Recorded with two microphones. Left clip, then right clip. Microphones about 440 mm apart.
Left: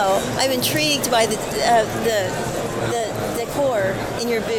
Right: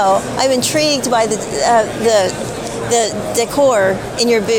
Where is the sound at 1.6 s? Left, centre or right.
Right.